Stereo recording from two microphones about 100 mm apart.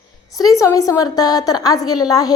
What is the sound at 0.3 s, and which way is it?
A woman's voice, 35° left (ahead or behind).